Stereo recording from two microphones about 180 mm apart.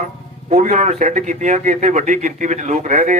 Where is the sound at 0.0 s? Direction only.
40° right (ahead or behind).